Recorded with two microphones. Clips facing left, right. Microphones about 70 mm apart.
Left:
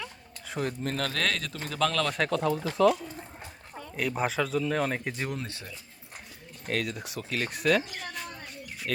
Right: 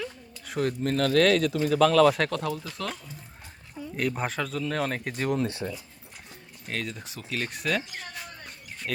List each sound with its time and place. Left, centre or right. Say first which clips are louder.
0.0 s speech: right 4 dB; centre
5.5 s speech: right 10 dB; right
6.7 s speech: left 3 dB; centre